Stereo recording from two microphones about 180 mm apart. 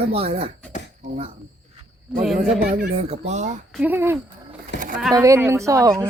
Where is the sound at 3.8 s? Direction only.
10° right (ahead or behind).